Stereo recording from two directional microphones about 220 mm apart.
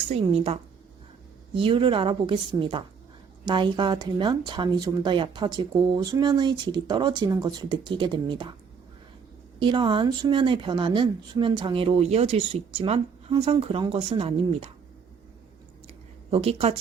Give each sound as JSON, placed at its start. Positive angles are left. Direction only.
{"t": 0.1, "sound": "speech", "side_deg": -25}
{"t": 9.6, "sound": "speech", "side_deg": -20}
{"t": 16.3, "sound": "speech", "side_deg": -25}